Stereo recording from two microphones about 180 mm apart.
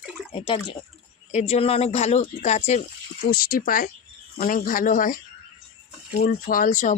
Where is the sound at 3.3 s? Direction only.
55° left (ahead or behind).